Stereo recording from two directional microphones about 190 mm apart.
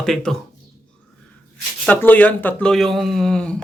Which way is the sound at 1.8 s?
10° left (ahead or behind).